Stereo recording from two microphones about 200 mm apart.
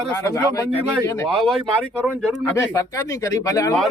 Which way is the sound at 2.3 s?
10° left (ahead or behind).